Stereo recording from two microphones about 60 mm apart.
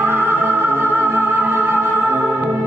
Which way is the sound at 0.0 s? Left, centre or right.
Right.